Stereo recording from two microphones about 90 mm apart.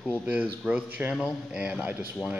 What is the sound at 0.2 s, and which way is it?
A man's voice, 15° right (ahead or behind).